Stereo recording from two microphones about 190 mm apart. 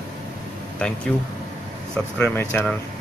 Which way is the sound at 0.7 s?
5° left (ahead or behind).